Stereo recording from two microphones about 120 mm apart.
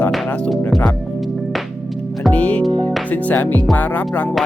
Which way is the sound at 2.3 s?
10° left (ahead or behind).